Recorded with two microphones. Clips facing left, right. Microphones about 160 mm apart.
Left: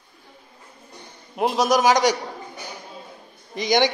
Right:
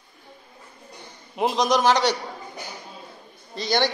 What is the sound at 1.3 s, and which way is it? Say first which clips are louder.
Speech: left 2 dB; centre (ahead or behind).